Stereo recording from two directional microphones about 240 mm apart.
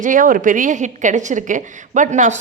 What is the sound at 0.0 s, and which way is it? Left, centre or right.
A woman's voice, right.